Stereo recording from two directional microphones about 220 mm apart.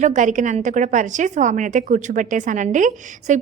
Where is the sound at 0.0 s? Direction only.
35° right (ahead or behind).